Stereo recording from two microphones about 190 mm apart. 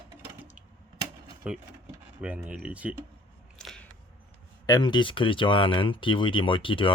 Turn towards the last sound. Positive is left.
turn(degrees=25)  # may be behind; listen again after turning